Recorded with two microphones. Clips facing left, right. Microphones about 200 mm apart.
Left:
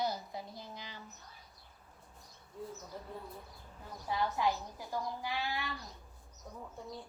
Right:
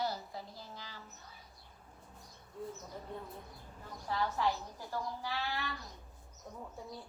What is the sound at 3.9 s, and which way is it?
A woman's voice, 15° left (ahead or behind).